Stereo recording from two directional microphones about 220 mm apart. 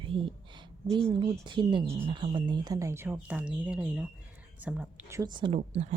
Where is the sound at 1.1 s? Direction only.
20° right (ahead or behind).